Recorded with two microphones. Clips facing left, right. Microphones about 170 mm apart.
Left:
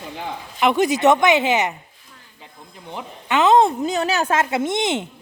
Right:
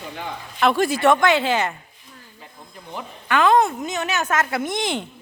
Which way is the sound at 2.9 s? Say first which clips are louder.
Left 1 dB; 20° left (ahead or behind).